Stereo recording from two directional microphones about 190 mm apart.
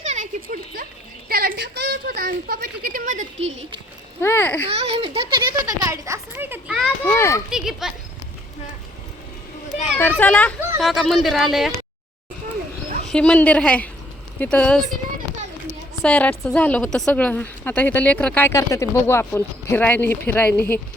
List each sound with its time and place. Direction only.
0.0 s a sound: 40° right (ahead or behind)
1.3 s a woman's voice: 55° right (ahead or behind); by 3.8 s 35° right (ahead or behind)
4.2 s a woman's voice: 10° left (ahead or behind)
4.7 s a child's voice: 30° right (ahead or behind)
5.5 s a sound: 15° right (ahead or behind)
6.8 s a child's voice: 10° left (ahead or behind)
7.5 s speech: centre (ahead or behind)
10.0 s a child's voice: 10° left (ahead or behind)
13.1 s a woman's voice: 5° left (ahead or behind)
16.0 s a woman's voice: 5° left (ahead or behind)